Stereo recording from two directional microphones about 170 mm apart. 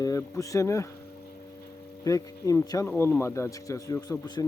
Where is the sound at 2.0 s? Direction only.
20° left (ahead or behind).